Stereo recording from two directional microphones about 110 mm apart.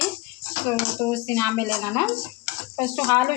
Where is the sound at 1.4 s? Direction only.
20° left (ahead or behind).